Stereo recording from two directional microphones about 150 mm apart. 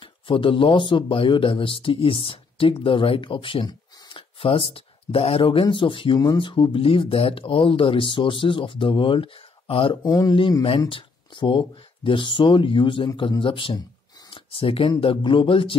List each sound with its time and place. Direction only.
0.0 s speech: 35° left (ahead or behind)
10.0 s speech: 25° left (ahead or behind)
10.9 s speech: 35° left (ahead or behind)